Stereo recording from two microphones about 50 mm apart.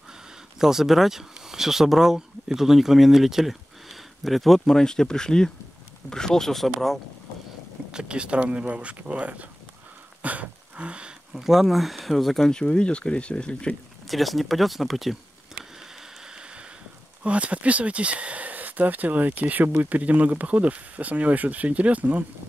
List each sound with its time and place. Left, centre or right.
0.6 s speech: centre
7.9 s speech: centre
10.2 s a sound: right
11.3 s speech: centre
12.4 s speech: centre
14.0 s speech: centre
15.8 s rain: centre
17.2 s speech: right